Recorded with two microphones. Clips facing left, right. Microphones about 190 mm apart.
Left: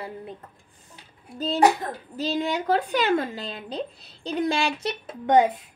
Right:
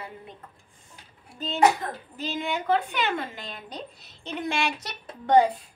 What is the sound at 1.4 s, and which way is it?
A woman's voice, 35° left (ahead or behind).